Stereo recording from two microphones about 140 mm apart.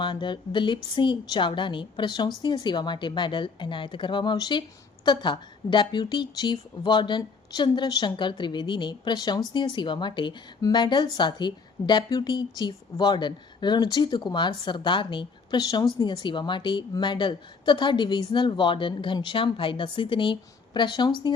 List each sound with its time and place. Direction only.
0.0 s a woman's voice: 35° left (ahead or behind)